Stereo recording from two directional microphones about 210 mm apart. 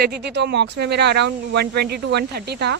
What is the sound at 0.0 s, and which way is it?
Speech, 50° right (ahead or behind).